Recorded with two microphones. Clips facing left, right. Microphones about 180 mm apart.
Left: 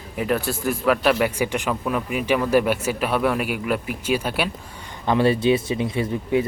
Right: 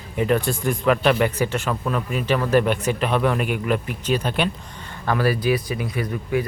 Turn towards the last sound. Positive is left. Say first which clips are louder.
# left 2 dB
turn(degrees=25)  # may be behind; listen again after turning